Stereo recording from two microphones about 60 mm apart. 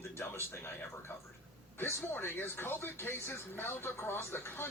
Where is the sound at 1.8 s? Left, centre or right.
Left.